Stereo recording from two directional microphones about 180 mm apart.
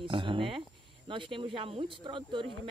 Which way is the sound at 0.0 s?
30° right (ahead or behind).